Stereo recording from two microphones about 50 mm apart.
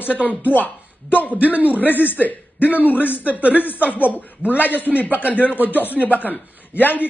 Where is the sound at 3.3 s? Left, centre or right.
Right.